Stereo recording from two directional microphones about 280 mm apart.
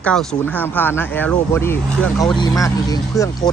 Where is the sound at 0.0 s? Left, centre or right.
Centre.